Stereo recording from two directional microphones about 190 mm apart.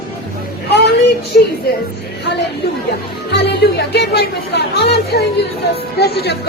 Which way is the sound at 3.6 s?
60° left (ahead or behind).